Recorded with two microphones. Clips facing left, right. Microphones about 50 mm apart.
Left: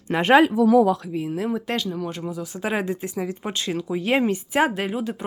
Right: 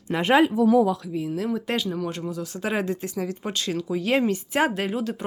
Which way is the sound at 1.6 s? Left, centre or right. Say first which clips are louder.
Even; centre.